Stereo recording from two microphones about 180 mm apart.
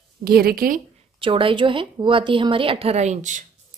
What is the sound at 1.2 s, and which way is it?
A woman's voice, 30° right (ahead or behind).